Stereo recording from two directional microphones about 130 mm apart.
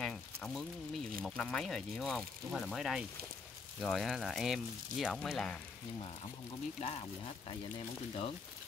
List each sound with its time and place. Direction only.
0.0 s a sound: 5° left (ahead or behind)
1.2 s speech: centre (ahead or behind)
6.8 s speech: 50° left (ahead or behind)